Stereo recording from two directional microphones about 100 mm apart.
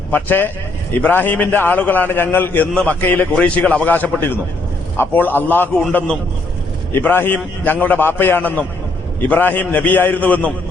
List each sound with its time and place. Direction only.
0.1 s a man's voice: 20° left (ahead or behind)